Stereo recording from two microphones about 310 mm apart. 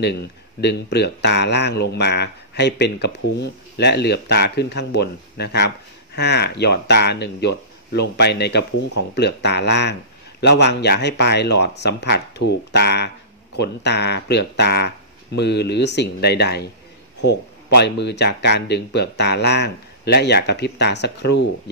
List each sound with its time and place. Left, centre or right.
0.6 s speech: left